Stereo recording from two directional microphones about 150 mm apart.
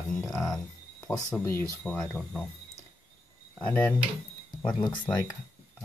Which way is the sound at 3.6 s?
10° left (ahead or behind).